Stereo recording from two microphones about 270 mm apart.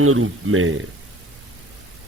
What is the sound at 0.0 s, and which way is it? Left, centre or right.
Speech, right.